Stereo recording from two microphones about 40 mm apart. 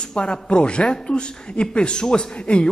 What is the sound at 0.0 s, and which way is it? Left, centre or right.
Speech, centre.